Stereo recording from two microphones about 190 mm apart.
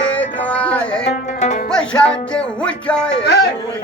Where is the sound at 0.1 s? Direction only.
5° left (ahead or behind).